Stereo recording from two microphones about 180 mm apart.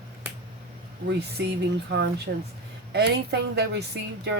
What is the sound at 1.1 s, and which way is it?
A woman's voice, 65° right (ahead or behind).